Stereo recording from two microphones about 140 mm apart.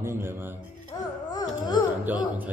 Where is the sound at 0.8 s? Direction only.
30° left (ahead or behind).